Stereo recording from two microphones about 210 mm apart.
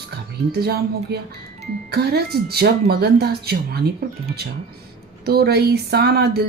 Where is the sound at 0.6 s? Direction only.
50° right (ahead or behind).